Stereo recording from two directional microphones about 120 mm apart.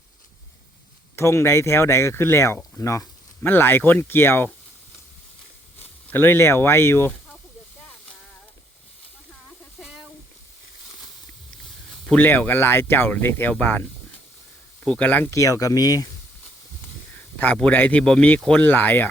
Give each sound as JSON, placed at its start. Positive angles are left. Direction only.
{"t": 1.1, "sound": "speech", "side_deg": 25}
{"t": 5.8, "sound": "speech", "side_deg": 15}
{"t": 11.9, "sound": "a sound", "side_deg": 5}
{"t": 12.2, "sound": "speech", "side_deg": 15}
{"t": 14.8, "sound": "speech", "side_deg": 10}
{"t": 15.3, "sound": "speech", "side_deg": 25}
{"t": 17.3, "sound": "speech", "side_deg": 15}